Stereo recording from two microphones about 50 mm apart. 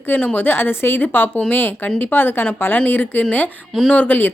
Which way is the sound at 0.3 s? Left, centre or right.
Left.